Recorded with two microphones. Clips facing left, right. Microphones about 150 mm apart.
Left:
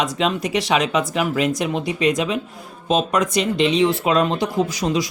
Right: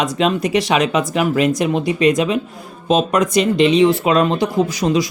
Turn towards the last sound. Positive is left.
turn(degrees=-60)  # may be behind; listen again after turning